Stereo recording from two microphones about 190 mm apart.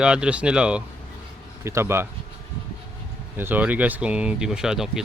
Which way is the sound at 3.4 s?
10° right (ahead or behind).